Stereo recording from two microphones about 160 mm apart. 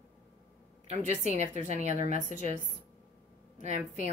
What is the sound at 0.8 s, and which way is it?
A woman's voice, 45° right (ahead or behind).